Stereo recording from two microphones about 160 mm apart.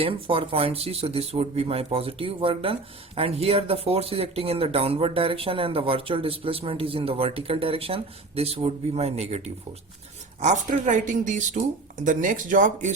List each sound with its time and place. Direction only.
0.0 s speech: 35° right (ahead or behind)
10.4 s a woman's voice: 50° right (ahead or behind)